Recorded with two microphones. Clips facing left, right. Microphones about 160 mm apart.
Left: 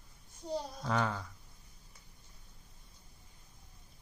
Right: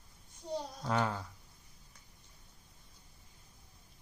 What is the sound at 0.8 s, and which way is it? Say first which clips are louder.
Speech: right 1 dB; 5° right (ahead or behind).